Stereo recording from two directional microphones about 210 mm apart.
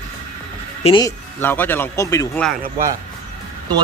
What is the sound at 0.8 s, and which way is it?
Speech, 25° left (ahead or behind).